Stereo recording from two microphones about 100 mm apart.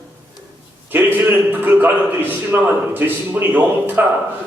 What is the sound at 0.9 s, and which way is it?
A man's voice, 20° right (ahead or behind).